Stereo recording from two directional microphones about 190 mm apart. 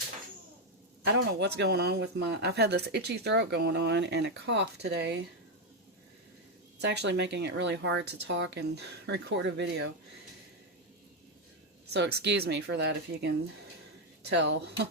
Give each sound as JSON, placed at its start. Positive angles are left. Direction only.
{"t": 1.0, "sound": "speech", "side_deg": -65}
{"t": 6.8, "sound": "speech", "side_deg": -65}
{"t": 11.9, "sound": "speech", "side_deg": -60}